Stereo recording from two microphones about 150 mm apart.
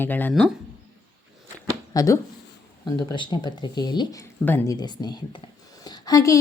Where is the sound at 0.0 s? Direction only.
10° left (ahead or behind).